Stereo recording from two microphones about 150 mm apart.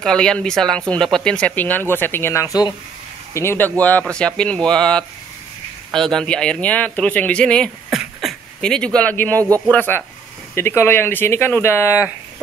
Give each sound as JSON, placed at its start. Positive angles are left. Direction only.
{"t": 0.0, "sound": "speech", "side_deg": 5}
{"t": 8.0, "sound": "a sound", "side_deg": 0}
{"t": 9.7, "sound": "speech", "side_deg": 10}